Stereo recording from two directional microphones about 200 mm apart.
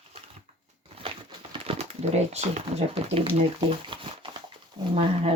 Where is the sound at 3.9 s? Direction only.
25° right (ahead or behind).